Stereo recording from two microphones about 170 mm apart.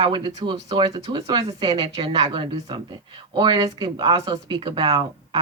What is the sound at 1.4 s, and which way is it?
A man's voice, 35° right (ahead or behind).